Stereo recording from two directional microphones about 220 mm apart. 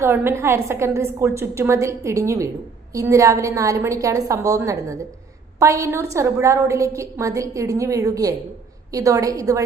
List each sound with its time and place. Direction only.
0.0 s a woman's voice: 10° right (ahead or behind)